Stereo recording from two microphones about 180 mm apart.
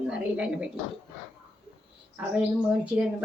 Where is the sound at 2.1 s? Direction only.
5° right (ahead or behind).